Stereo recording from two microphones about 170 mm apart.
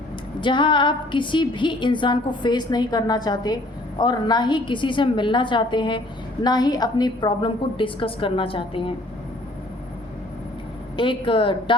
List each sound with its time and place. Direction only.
0.4 s a woman's voice: 30° left (ahead or behind)
10.9 s a woman's voice: 30° left (ahead or behind)